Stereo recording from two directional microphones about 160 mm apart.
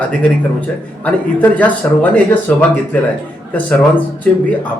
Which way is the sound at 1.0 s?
10° left (ahead or behind).